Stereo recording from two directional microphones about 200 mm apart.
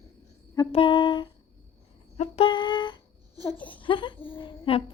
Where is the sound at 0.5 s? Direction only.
25° left (ahead or behind).